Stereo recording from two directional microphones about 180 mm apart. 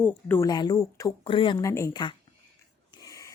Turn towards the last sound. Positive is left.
turn(degrees=15)  # may be behind; listen again after turning